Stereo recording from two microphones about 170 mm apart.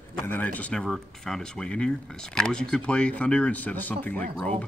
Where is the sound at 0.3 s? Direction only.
10° left (ahead or behind).